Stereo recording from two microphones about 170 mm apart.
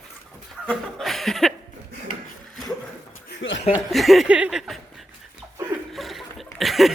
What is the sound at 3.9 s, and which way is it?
Speech, centre (ahead or behind).